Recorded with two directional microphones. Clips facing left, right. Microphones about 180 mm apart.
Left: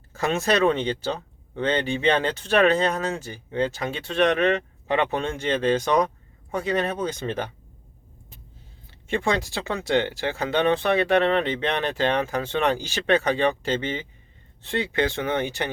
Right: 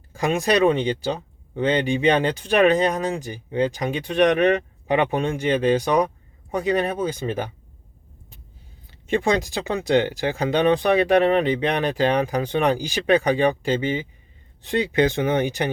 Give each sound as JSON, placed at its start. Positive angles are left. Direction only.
{"t": 0.1, "sound": "speech", "side_deg": -15}
{"t": 8.9, "sound": "speech", "side_deg": -20}